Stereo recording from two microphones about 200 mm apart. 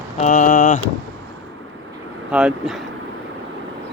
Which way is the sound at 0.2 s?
40° left (ahead or behind).